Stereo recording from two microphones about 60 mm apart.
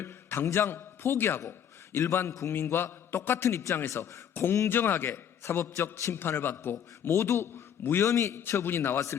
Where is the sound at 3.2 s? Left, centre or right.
Left.